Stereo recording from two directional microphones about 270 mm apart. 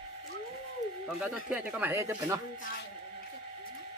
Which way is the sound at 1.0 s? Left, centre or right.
Centre.